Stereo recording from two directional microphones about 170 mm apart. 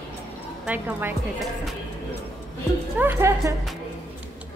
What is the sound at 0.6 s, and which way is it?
Speech, 10° right (ahead or behind).